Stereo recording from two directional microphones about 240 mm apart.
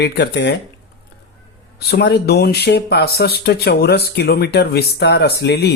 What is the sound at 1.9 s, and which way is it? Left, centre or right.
Speech, left.